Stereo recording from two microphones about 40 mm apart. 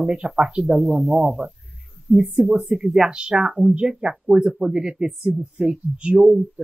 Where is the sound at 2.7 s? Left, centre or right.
Centre.